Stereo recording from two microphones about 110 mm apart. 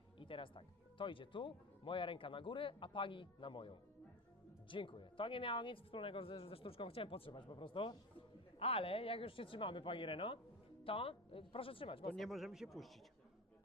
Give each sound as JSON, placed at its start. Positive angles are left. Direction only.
{"t": 0.2, "sound": "speech", "side_deg": 50}
{"t": 12.1, "sound": "speech", "side_deg": 0}